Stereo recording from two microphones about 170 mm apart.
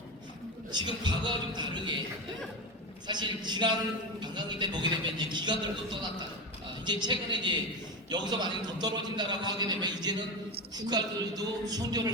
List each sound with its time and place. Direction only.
0.7 s speech: 25° right (ahead or behind)
3.1 s speech: 25° right (ahead or behind)